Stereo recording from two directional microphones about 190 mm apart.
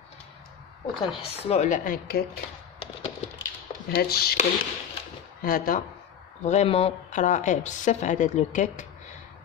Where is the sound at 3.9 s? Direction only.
55° left (ahead or behind).